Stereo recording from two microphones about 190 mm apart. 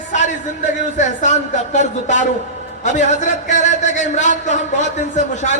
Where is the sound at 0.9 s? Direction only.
40° left (ahead or behind).